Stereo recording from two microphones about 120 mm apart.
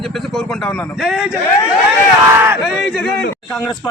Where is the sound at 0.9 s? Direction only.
Centre (ahead or behind).